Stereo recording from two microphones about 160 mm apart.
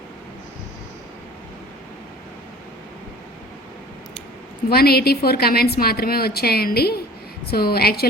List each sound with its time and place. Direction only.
4.7 s a woman's voice: 75° left (ahead or behind)